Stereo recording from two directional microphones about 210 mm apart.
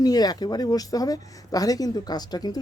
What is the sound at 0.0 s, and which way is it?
Speech, 20° left (ahead or behind).